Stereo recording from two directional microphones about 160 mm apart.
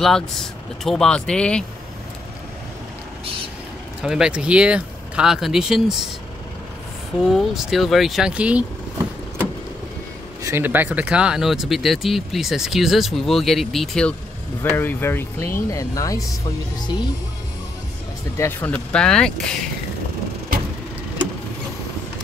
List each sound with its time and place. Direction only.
0.0 s speech: centre (ahead or behind)
4.0 s speech: 5° right (ahead or behind)
7.2 s speech: centre (ahead or behind)
10.4 s speech: 15° right (ahead or behind); by 14.1 s 5° left (ahead or behind)
14.6 s speech: 15° left (ahead or behind)
18.4 s speech: 10° left (ahead or behind)